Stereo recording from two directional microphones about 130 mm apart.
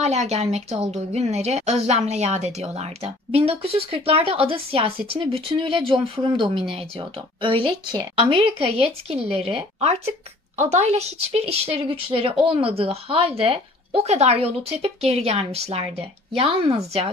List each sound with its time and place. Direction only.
0.0 s a woman's voice: 60° right (ahead or behind)